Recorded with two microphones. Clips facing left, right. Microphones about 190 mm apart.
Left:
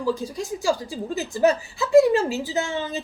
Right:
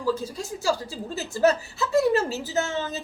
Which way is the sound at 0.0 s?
15° left (ahead or behind).